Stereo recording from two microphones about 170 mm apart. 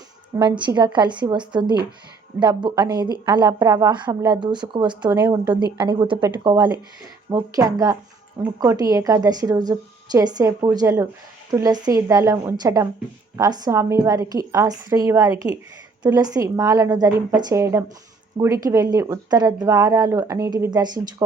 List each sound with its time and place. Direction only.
0.3 s speech: 25° right (ahead or behind)